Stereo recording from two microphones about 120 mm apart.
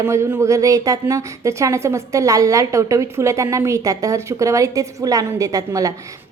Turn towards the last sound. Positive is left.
turn(degrees=-30)  # may be behind; listen again after turning